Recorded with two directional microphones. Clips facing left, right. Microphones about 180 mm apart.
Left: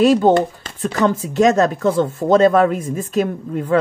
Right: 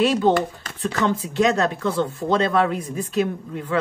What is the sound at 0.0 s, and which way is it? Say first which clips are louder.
Speech: left 5 dB; 45° left (ahead or behind).